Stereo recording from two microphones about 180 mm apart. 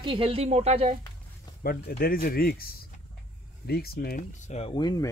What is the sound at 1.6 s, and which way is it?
Speech, 55° left (ahead or behind).